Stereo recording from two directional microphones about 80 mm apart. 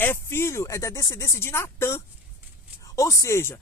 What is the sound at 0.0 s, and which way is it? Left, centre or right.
Speech, left.